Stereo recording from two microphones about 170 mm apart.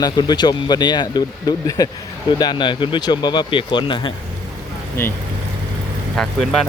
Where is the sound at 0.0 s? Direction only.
25° left (ahead or behind).